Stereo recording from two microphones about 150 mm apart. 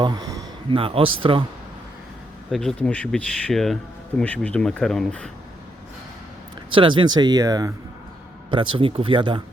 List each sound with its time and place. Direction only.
0.0 s a sound: 25° right (ahead or behind)
0.8 s speech: 35° right (ahead or behind)
2.5 s speech: 5° left (ahead or behind)
6.7 s speech: 35° right (ahead or behind)